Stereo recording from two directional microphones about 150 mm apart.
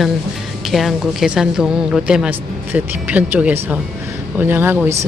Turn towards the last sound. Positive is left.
turn(degrees=-15)  # may be behind; listen again after turning